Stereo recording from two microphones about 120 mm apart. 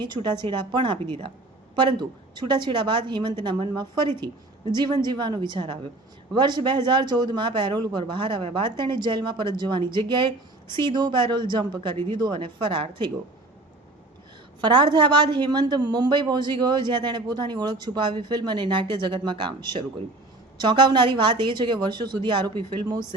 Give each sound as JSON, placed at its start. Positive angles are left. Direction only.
{"t": 0.0, "sound": "a woman's voice", "side_deg": -35}
{"t": 14.6, "sound": "a woman's voice", "side_deg": -40}